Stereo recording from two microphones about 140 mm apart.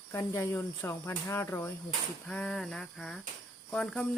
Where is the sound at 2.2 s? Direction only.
10° left (ahead or behind).